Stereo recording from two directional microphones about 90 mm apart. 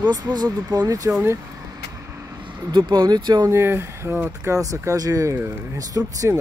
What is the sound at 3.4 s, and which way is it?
Speech, 30° right (ahead or behind).